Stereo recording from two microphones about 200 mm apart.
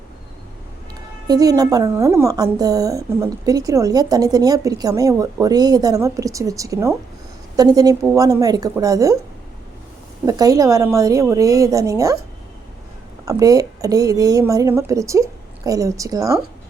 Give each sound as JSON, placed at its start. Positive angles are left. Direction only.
{"t": 1.3, "sound": "a woman's voice", "side_deg": -20}
{"t": 10.2, "sound": "a woman's voice", "side_deg": -20}
{"t": 13.2, "sound": "a woman's voice", "side_deg": -20}